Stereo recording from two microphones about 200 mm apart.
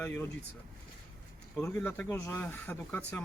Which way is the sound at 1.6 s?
10° left (ahead or behind).